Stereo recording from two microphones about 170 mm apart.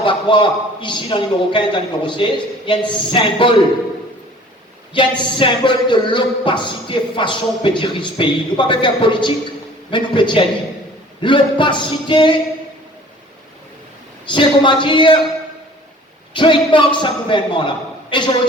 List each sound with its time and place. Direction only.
0.0 s speech: 30° left (ahead or behind)
4.9 s speech: 30° left (ahead or behind)
14.3 s speech: 30° left (ahead or behind)
16.3 s speech: 30° left (ahead or behind)